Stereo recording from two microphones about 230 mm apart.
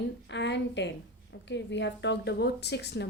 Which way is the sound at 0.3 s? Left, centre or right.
Left.